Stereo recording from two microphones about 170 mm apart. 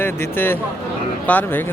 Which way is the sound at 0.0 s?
10° left (ahead or behind).